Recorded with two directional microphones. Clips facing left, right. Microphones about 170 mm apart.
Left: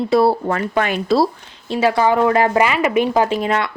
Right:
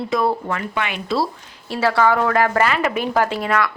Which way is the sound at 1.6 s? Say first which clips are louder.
Left 2 dB; 20° left (ahead or behind).